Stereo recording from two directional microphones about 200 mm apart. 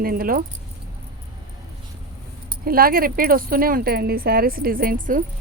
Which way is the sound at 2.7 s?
45° right (ahead or behind).